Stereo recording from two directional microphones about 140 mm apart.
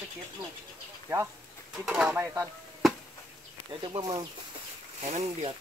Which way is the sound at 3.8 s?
35° right (ahead or behind).